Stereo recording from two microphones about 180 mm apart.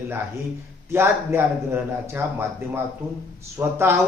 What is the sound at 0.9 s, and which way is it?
Speech, 15° right (ahead or behind).